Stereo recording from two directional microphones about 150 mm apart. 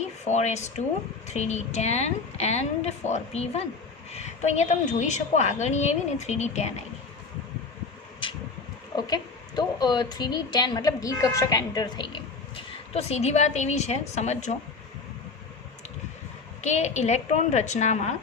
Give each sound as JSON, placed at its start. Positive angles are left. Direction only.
{"t": 0.3, "sound": "a woman's voice", "side_deg": 50}
{"t": 9.0, "sound": "a woman's voice", "side_deg": 30}
{"t": 12.9, "sound": "a woman's voice", "side_deg": 45}
{"t": 16.6, "sound": "a woman's voice", "side_deg": 50}